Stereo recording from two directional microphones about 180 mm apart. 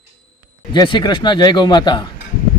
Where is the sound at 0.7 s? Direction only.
25° left (ahead or behind).